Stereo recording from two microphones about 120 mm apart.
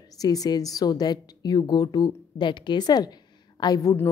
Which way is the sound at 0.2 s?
30° left (ahead or behind).